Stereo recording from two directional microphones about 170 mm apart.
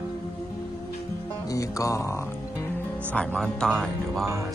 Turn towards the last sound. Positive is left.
turn(degrees=5)  # may be behind; listen again after turning